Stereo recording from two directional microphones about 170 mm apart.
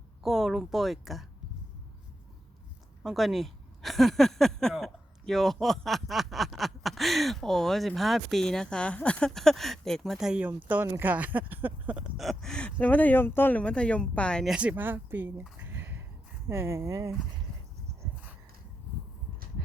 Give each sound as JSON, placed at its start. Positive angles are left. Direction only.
{"t": 0.2, "sound": "speech", "side_deg": 0}
{"t": 3.0, "sound": "speech", "side_deg": 0}
{"t": 14.5, "sound": "speech", "side_deg": -5}
{"t": 15.7, "sound": "a sound", "side_deg": -10}
{"t": 16.5, "sound": "speech", "side_deg": -15}